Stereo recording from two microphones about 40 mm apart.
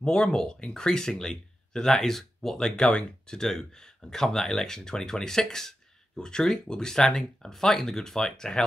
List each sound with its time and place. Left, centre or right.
0.0 s speech: centre